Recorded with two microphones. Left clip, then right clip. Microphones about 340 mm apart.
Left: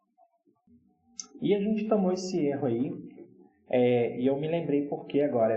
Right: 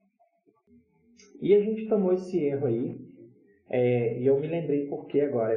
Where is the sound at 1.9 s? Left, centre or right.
Centre.